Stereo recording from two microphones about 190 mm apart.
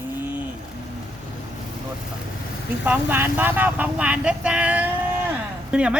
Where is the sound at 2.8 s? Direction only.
10° right (ahead or behind).